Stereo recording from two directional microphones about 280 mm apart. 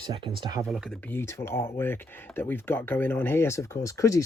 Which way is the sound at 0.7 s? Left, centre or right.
Centre.